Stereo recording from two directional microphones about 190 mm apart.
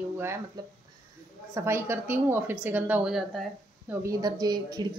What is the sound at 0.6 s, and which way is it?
Speech, 20° right (ahead or behind).